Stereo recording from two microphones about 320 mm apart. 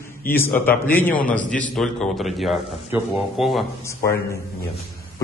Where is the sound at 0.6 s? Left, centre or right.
Centre.